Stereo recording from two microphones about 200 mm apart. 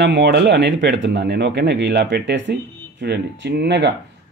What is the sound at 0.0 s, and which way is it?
A man's voice, 55° right (ahead or behind).